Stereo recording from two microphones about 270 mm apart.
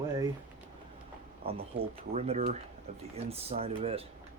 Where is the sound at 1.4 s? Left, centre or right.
Right.